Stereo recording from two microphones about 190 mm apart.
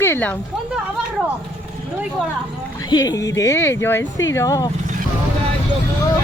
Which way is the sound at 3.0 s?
15° left (ahead or behind).